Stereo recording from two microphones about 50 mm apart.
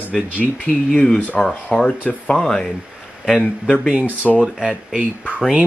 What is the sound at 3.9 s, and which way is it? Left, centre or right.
Speech, right.